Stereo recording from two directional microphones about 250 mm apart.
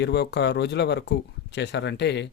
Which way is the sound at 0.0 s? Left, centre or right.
Left.